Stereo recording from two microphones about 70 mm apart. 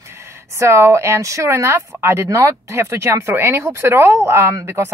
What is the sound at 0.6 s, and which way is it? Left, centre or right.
Speech, right.